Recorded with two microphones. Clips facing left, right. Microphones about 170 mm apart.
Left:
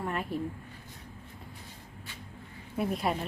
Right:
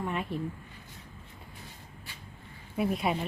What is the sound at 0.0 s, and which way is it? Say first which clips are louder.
Speech: right 1 dB; centre (ahead or behind).